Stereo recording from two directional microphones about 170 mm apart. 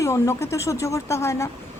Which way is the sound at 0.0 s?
15° left (ahead or behind).